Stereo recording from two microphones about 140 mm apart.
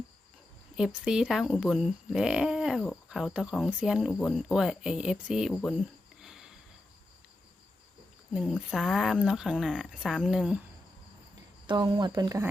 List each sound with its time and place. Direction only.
0.8 s speech: 5° right (ahead or behind)
6.2 s a sound: centre (ahead or behind)
8.3 s speech: centre (ahead or behind)
11.6 s speech: 35° right (ahead or behind)